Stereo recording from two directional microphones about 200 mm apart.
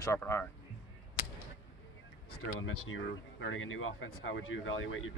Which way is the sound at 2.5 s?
85° left.